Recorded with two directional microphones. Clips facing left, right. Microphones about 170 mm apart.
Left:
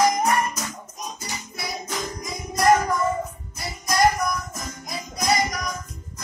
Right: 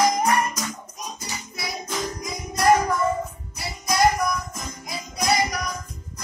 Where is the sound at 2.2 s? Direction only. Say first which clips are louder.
Even; centre (ahead or behind).